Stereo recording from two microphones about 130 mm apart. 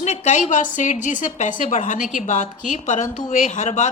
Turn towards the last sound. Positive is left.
turn(degrees=70)  # may be behind; listen again after turning